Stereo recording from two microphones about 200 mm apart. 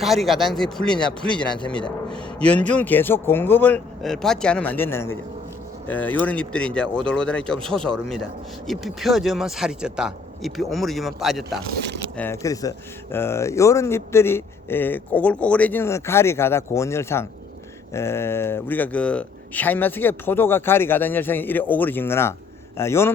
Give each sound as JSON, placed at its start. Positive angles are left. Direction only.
{"t": 0.0, "sound": "speech", "side_deg": 0}
{"t": 2.0, "sound": "a sound", "side_deg": 5}
{"t": 2.7, "sound": "speech", "side_deg": 10}
{"t": 12.1, "sound": "speech", "side_deg": 10}